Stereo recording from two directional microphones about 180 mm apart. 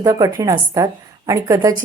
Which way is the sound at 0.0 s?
20° right (ahead or behind).